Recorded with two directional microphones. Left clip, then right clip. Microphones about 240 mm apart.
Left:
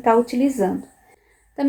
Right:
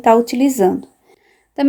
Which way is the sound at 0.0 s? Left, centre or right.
Right.